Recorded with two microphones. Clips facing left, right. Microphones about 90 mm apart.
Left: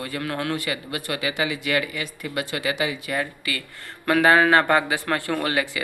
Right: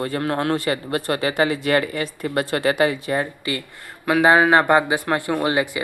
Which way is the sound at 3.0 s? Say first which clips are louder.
Right 4 dB; 30° right (ahead or behind).